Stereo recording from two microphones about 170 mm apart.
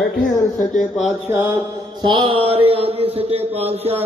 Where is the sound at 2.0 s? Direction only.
30° right (ahead or behind).